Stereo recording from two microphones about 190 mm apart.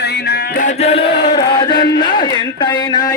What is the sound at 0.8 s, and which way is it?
Chant, 30° left (ahead or behind).